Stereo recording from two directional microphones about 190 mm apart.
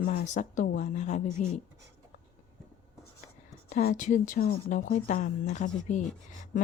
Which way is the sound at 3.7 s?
50° left (ahead or behind).